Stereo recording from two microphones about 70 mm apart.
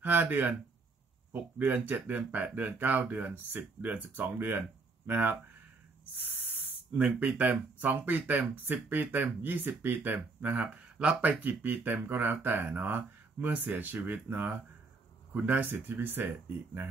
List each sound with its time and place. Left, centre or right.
0.0 s speech: right